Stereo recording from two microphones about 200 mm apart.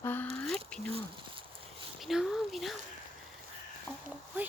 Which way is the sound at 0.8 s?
30° right (ahead or behind).